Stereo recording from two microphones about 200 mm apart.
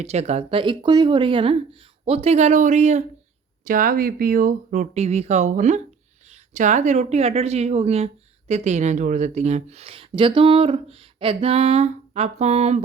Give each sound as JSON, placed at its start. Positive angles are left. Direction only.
{"t": 0.0, "sound": "speech", "side_deg": -35}